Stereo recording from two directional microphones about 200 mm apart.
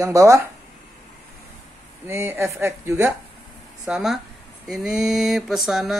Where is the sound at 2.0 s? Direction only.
10° right (ahead or behind).